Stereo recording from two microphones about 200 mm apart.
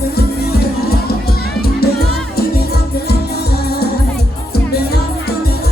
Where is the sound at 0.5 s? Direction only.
50° left (ahead or behind).